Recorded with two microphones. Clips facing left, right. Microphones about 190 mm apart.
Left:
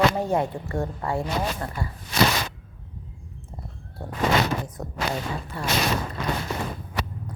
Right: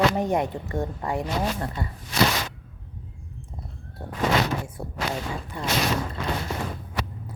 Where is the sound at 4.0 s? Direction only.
5° right (ahead or behind).